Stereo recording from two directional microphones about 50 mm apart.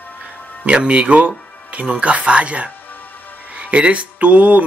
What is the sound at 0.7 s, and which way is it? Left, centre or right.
Speech, right.